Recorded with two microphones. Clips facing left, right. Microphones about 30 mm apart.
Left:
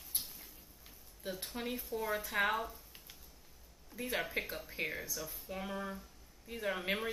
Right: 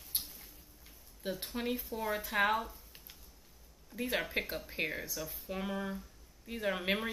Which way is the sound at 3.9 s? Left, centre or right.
Centre.